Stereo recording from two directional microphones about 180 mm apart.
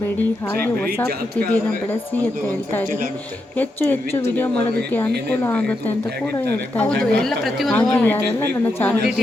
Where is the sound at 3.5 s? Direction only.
10° left (ahead or behind).